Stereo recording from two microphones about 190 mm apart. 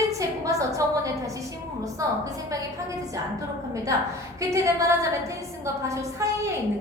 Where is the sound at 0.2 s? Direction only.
15° right (ahead or behind).